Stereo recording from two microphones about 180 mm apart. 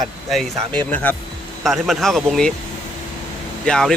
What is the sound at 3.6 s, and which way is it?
Speech, 5° left (ahead or behind).